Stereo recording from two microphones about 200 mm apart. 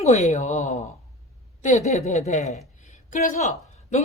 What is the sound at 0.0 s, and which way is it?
Speech, 35° left (ahead or behind).